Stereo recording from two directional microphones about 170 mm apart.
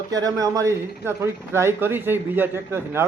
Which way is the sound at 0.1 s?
20° right (ahead or behind).